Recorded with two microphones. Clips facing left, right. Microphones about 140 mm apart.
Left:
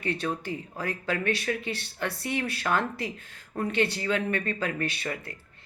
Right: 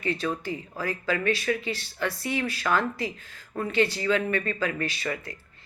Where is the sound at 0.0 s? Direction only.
60° left (ahead or behind).